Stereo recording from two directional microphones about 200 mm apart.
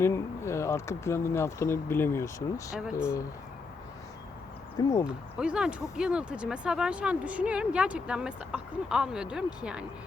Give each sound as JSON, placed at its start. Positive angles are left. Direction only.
{"t": 0.0, "sound": "speech", "side_deg": 15}
{"t": 4.8, "sound": "speech", "side_deg": 15}
{"t": 5.0, "sound": "speech", "side_deg": -5}